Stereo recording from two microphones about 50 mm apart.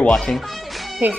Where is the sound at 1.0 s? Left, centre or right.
Right.